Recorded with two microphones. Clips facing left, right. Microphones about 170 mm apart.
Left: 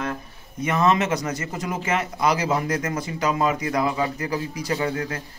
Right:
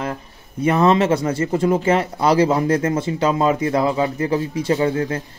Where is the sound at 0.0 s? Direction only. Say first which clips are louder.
Right 3 dB; 25° right (ahead or behind).